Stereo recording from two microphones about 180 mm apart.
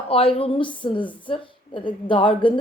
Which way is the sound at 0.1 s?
30° left (ahead or behind).